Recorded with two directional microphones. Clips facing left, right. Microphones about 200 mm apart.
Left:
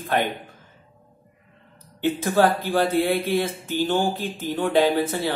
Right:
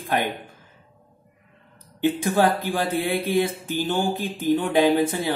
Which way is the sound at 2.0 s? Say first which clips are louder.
Even; 15° right (ahead or behind).